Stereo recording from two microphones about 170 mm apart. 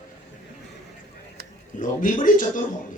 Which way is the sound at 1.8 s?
50° left (ahead or behind).